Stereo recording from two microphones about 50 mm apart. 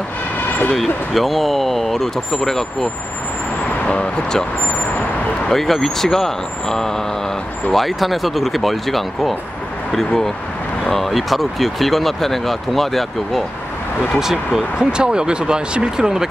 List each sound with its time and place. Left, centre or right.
0.7 s speech: centre
3.8 s speech: left
5.5 s speech: centre
14.2 s speech: centre